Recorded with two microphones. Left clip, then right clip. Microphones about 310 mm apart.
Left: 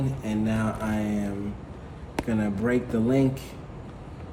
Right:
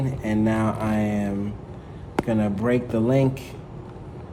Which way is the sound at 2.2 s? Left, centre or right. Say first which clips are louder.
Right 3 dB; right.